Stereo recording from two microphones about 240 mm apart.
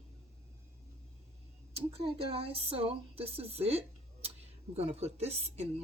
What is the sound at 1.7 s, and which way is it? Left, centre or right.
Speech, right.